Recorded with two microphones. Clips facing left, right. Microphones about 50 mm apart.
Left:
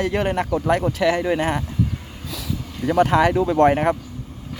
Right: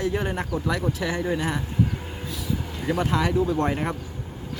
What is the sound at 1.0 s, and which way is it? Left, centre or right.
Speech, left.